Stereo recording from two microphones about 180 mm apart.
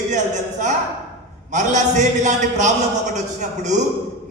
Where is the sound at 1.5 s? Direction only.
40° right (ahead or behind).